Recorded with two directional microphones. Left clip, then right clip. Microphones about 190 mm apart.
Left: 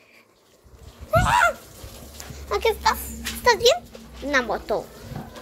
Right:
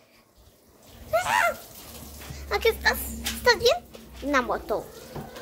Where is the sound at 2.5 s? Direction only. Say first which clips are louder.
Left 2 dB; centre (ahead or behind).